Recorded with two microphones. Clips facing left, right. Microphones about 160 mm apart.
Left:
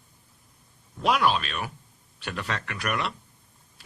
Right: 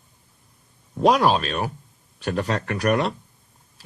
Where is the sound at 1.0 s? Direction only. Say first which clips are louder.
Right 6 dB; 40° right (ahead or behind).